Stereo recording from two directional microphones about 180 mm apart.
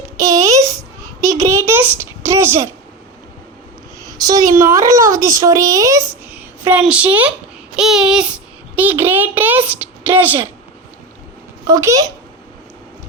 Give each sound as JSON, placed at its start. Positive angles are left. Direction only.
{"t": 0.2, "sound": "babbling", "side_deg": -20}
{"t": 4.0, "sound": "a woman's voice", "side_deg": -20}
{"t": 11.6, "sound": "a child's voice", "side_deg": -20}